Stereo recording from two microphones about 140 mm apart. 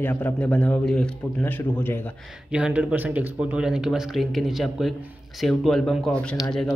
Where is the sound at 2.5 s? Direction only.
10° right (ahead or behind).